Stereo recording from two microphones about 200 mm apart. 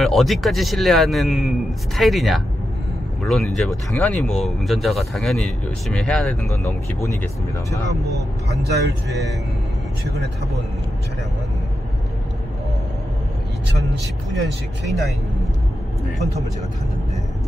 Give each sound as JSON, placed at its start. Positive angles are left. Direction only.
{"t": 0.0, "sound": "speech", "side_deg": 0}
{"t": 8.6, "sound": "speech", "side_deg": -55}
{"t": 14.9, "sound": "speech", "side_deg": 0}